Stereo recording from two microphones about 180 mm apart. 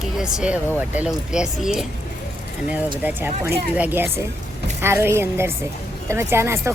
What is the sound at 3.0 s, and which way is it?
Speech, 10° right (ahead or behind).